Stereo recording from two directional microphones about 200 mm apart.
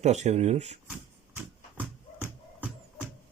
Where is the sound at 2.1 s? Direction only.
10° right (ahead or behind).